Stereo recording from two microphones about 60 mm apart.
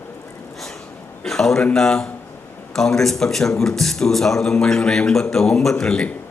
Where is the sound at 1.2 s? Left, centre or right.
Centre.